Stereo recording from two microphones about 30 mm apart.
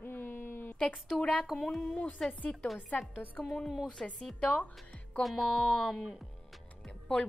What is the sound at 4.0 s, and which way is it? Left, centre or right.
Speech, left.